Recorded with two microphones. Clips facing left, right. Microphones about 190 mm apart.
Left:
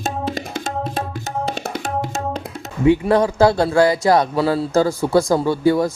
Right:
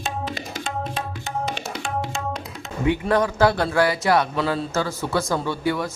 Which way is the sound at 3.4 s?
15° left (ahead or behind).